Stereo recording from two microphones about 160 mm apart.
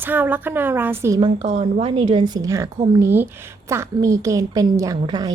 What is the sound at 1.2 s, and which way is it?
A woman's voice, 35° right (ahead or behind).